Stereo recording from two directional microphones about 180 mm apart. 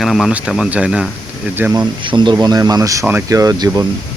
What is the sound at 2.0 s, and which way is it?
Speech, 25° right (ahead or behind).